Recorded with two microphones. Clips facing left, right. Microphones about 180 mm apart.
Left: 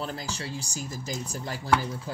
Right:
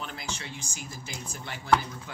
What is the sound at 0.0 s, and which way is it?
Speech, 35° left (ahead or behind).